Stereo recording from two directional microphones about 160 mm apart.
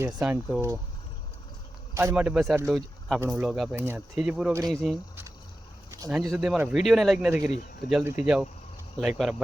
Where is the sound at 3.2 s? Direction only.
15° right (ahead or behind).